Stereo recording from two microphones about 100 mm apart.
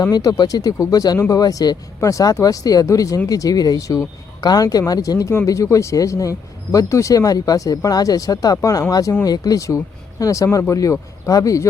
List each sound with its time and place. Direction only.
0.0 s speech: 40° left (ahead or behind)